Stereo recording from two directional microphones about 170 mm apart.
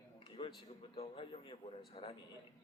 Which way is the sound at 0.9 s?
35° left (ahead or behind).